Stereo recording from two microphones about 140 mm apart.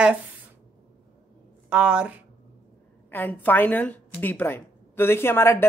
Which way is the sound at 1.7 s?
10° right (ahead or behind).